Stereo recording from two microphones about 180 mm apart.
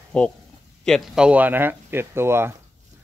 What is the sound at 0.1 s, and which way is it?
Speech, 5° left (ahead or behind).